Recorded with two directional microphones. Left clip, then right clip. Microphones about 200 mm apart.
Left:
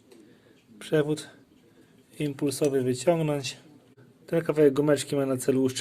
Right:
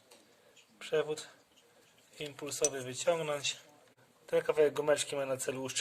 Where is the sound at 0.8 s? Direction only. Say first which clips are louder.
Left 7 dB; 30° left (ahead or behind).